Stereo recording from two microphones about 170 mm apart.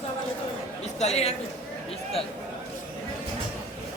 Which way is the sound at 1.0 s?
40° left (ahead or behind).